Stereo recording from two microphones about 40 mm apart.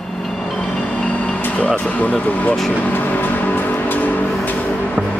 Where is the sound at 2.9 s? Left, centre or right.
Left.